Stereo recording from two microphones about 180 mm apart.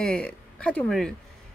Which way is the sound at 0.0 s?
5° left (ahead or behind).